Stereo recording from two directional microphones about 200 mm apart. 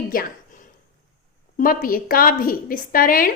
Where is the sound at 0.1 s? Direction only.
45° left (ahead or behind).